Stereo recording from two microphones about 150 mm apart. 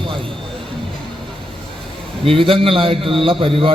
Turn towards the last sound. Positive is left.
turn(degrees=-35)  # may be behind; listen again after turning